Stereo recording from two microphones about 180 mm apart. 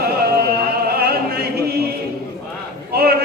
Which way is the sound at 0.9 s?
60° right (ahead or behind).